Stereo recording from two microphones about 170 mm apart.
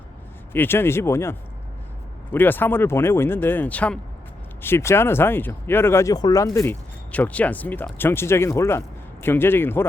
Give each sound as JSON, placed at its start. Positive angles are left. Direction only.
{"t": 0.5, "sound": "speech", "side_deg": 15}